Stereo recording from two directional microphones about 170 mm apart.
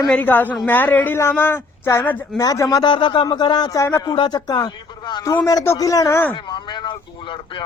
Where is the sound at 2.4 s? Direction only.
20° left (ahead or behind).